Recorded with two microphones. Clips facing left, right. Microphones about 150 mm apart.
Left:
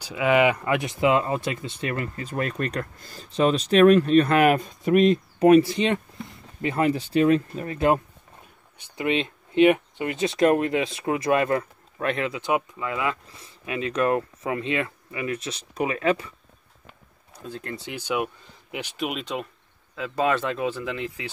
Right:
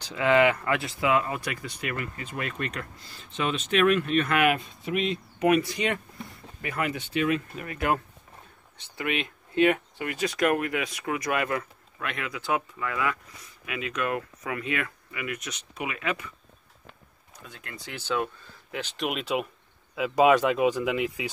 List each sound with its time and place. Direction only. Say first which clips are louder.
0.0 s speech: left 1 dB; 15° left (ahead or behind); by 16.3 s 35° left (ahead or behind)
17.4 s speech: left 9 dB; 35° left (ahead or behind)
17.8 s speech: left 1 dB; 15° left (ahead or behind)
19.0 s speech: right 2 dB; 5° right (ahead or behind)